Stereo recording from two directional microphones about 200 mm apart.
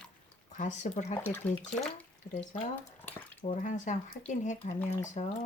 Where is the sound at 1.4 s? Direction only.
5° left (ahead or behind).